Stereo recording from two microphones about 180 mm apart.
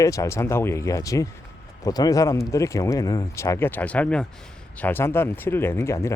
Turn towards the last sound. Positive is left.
turn(degrees=15)  # may be behind; listen again after turning